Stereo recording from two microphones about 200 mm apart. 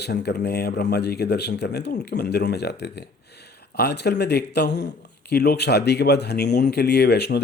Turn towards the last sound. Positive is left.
turn(degrees=55)  # may be behind; listen again after turning